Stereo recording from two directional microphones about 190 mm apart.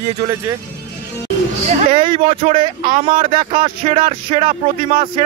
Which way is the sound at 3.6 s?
25° right (ahead or behind).